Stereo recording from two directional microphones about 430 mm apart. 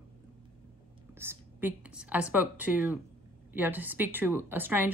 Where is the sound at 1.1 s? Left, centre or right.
Centre.